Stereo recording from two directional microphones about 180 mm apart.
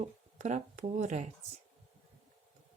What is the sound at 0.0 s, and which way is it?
Speech, 40° right (ahead or behind).